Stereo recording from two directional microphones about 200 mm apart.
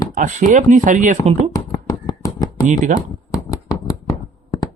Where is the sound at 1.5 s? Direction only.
20° left (ahead or behind).